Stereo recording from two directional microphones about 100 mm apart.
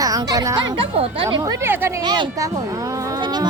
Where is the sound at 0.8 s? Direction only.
65° right (ahead or behind).